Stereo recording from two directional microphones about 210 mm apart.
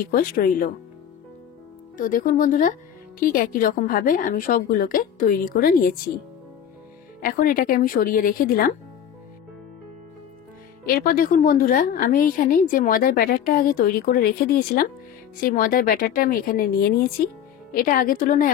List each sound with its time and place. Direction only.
0.0 s a woman's voice: 45° left (ahead or behind)
2.0 s a woman's voice: 40° left (ahead or behind)
7.2 s a woman's voice: 45° left (ahead or behind)
10.9 s a woman's voice: 45° left (ahead or behind)